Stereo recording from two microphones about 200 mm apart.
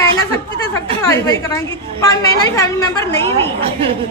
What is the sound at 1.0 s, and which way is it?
Speech, 15° left (ahead or behind).